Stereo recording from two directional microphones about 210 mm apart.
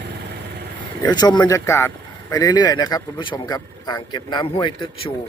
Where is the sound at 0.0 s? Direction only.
55° right (ahead or behind).